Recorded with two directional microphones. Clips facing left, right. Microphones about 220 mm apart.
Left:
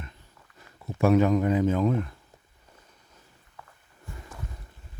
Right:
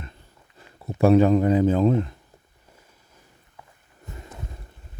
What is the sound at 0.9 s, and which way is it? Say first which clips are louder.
Speech: right 4 dB; 35° right (ahead or behind).